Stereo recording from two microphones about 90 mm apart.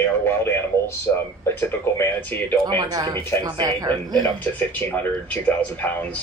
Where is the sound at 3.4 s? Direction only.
45° right (ahead or behind).